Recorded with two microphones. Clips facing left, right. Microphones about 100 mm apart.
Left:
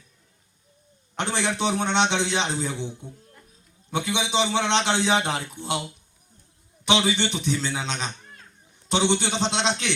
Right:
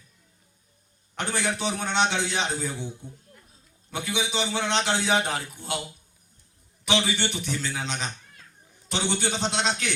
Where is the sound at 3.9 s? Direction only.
25° left (ahead or behind).